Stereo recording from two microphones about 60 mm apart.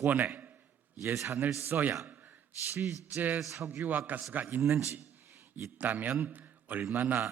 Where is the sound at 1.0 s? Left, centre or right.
Right.